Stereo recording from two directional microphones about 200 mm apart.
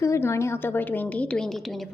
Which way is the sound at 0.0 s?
15° left (ahead or behind).